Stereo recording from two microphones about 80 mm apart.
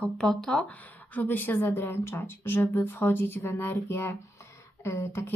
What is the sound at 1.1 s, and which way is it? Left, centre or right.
Speech, left.